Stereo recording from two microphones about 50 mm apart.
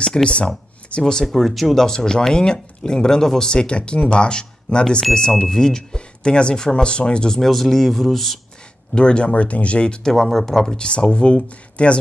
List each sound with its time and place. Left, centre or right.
0.0 s speech: centre
1.2 s speech: centre
8.9 s speech: centre
10.1 s speech: centre
10.8 s speech: left